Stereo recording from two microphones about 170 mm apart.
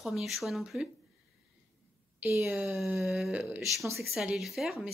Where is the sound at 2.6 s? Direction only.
5° right (ahead or behind).